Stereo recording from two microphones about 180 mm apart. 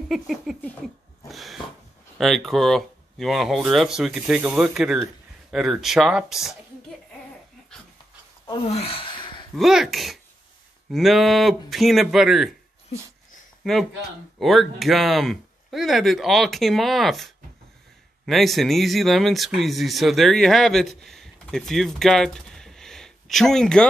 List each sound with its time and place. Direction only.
0.1 s speech: centre (ahead or behind)
1.3 s a sound: centre (ahead or behind)
2.1 s speech: centre (ahead or behind)
8.5 s gasp: 30° left (ahead or behind)
9.6 s speech: centre (ahead or behind)
13.6 s speech: centre (ahead or behind)